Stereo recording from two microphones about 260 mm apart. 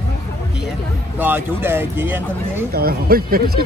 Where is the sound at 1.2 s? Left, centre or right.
Centre.